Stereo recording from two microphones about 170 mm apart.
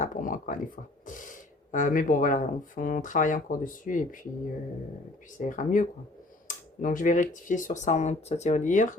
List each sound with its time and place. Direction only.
0.0 s speech: 50° left (ahead or behind)
5.4 s speech: 50° left (ahead or behind)